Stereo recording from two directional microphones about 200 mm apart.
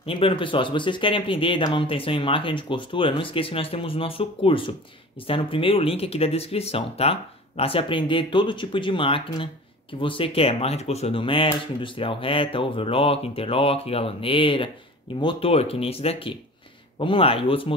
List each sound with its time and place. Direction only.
0.0 s speech: 25° left (ahead or behind)